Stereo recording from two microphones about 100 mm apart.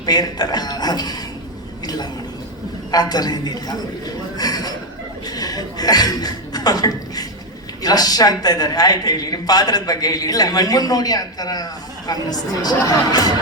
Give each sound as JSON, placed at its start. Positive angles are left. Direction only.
{"t": 0.0, "sound": "a woman's voice", "side_deg": 40}
{"t": 2.9, "sound": "a woman's voice", "side_deg": 40}
{"t": 4.4, "sound": "chuckle", "side_deg": 40}
{"t": 7.8, "sound": "a woman's voice", "side_deg": 40}